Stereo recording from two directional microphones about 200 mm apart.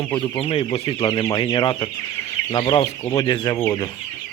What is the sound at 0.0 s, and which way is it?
Speech, 5° left (ahead or behind).